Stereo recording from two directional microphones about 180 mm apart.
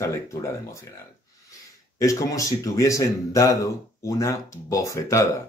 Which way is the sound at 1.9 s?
20° left (ahead or behind).